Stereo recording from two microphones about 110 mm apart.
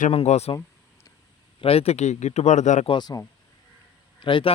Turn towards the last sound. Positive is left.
turn(degrees=50)  # may be behind; listen again after turning